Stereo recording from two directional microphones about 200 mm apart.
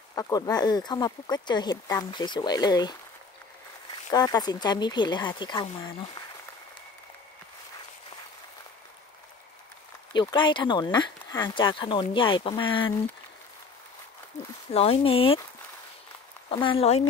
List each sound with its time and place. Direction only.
0.1 s speech: 20° left (ahead or behind)
4.1 s speech: 20° left (ahead or behind)
10.1 s speech: 20° left (ahead or behind)
14.7 s speech: 30° left (ahead or behind)
16.4 s speech: 25° left (ahead or behind)